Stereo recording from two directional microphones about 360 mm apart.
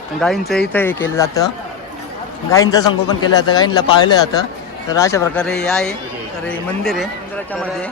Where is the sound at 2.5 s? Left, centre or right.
Centre.